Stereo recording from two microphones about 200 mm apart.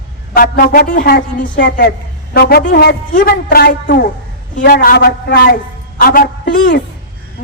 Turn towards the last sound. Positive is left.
turn(degrees=45)  # may be behind; listen again after turning